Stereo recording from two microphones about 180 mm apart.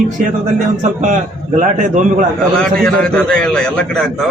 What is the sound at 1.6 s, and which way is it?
Speech, 45° right (ahead or behind).